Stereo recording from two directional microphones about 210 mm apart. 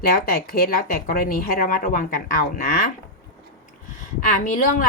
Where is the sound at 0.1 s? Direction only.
45° left (ahead or behind).